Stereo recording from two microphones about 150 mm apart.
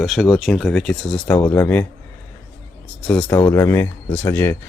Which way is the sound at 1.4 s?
15° left (ahead or behind).